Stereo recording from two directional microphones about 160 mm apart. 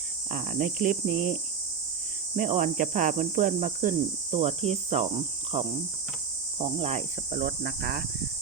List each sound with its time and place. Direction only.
0.3 s cricket: 55° right (ahead or behind)